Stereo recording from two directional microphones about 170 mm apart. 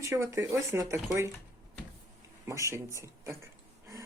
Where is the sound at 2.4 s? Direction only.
15° right (ahead or behind).